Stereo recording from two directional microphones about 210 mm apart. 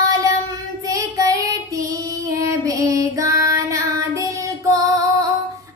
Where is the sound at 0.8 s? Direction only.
15° right (ahead or behind).